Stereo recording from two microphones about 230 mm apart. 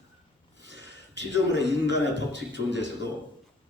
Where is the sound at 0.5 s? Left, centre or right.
Right.